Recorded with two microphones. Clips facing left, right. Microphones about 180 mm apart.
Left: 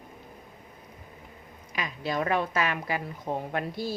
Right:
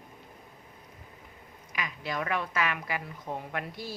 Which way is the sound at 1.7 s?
30° left (ahead or behind).